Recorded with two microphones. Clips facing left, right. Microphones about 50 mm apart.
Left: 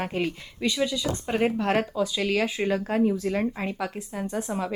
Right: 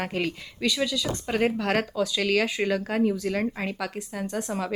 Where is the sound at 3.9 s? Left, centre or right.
Centre.